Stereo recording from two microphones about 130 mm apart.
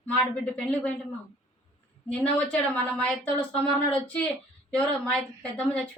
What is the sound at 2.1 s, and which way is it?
Speech, 10° left (ahead or behind).